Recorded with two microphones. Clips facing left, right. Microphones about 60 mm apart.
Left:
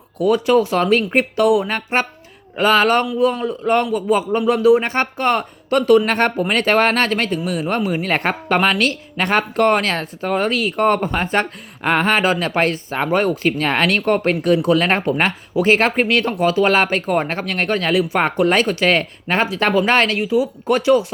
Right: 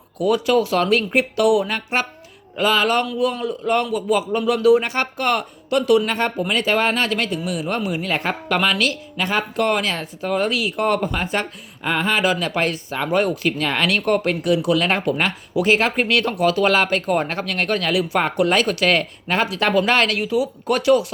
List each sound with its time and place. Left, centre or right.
0.2 s speech: left
6.1 s speech: left